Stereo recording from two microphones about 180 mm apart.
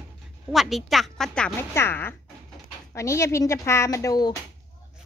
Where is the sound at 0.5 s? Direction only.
Centre (ahead or behind); by 4.4 s 20° left (ahead or behind).